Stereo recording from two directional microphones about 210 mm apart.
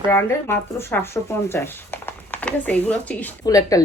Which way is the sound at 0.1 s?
10° left (ahead or behind).